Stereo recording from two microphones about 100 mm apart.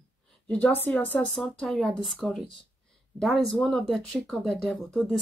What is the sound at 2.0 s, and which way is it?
Speech, centre (ahead or behind).